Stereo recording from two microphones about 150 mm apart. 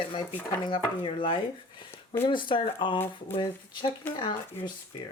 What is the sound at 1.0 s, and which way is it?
Speech, 35° left (ahead or behind).